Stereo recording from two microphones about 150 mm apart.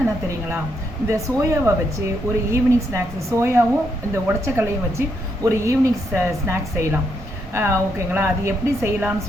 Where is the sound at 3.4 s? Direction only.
15° right (ahead or behind).